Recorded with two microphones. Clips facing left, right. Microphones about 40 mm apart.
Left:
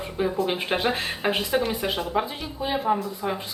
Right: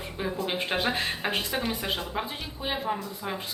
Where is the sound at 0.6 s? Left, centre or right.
Centre.